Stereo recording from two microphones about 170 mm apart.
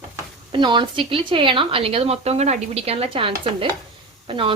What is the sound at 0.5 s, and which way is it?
A woman's voice, 25° right (ahead or behind).